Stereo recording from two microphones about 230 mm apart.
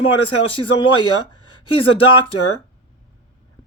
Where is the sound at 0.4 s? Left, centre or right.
Left.